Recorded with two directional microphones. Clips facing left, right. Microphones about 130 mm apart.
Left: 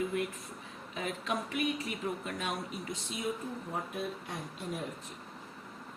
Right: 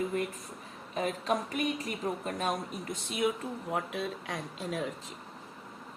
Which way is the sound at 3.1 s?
75° right (ahead or behind).